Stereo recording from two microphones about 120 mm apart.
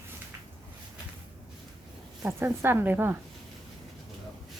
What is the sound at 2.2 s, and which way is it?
Speech, 20° right (ahead or behind).